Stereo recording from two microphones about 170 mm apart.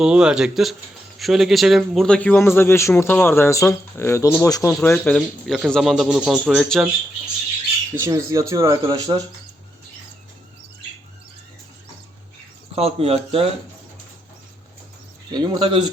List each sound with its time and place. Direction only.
0.0 s a man's voice: 5° right (ahead or behind); by 4.7 s 20° left (ahead or behind)
4.7 s speech: 10° left (ahead or behind)
7.9 s speech: 20° right (ahead or behind)
12.7 s speech: 35° right (ahead or behind)
15.3 s speech: 25° right (ahead or behind)